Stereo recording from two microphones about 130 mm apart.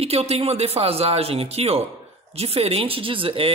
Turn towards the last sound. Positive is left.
turn(degrees=-45)  # may be behind; listen again after turning